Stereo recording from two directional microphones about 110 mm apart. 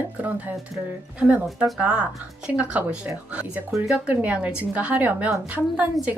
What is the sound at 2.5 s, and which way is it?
A woman's voice, 15° right (ahead or behind).